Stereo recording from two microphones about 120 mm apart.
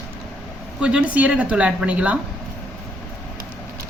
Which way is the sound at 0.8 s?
10° right (ahead or behind).